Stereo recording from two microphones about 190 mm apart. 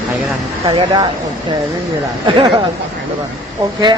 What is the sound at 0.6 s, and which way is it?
Speech, 25° right (ahead or behind).